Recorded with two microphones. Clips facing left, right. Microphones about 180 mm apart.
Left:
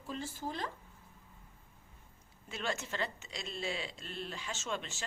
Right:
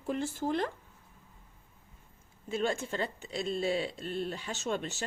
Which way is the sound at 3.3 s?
50° right (ahead or behind).